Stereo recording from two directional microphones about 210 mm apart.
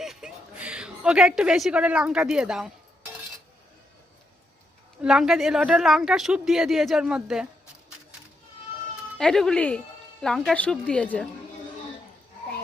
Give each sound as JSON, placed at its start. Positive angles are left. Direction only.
{"t": 0.0, "sound": "a woman's voice", "side_deg": 0}
{"t": 5.0, "sound": "a woman's voice", "side_deg": -5}
{"t": 9.1, "sound": "a woman's voice", "side_deg": 0}